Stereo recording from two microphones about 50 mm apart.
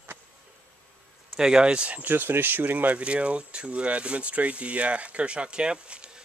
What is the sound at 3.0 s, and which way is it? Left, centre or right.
Speech, right.